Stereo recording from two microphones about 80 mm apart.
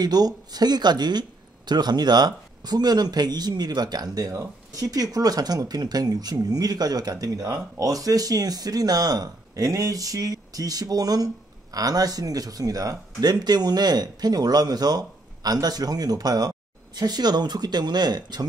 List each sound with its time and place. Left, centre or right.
0.0 s speech: right